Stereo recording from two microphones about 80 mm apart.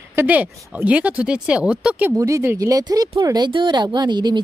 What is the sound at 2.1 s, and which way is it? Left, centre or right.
Speech, right.